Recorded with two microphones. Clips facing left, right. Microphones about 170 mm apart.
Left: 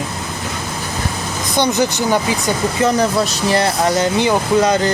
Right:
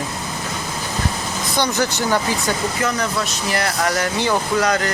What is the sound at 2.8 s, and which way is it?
Speech, 35° left (ahead or behind).